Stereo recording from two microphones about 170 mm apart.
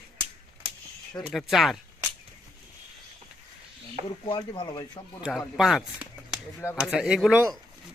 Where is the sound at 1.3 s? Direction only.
Centre (ahead or behind).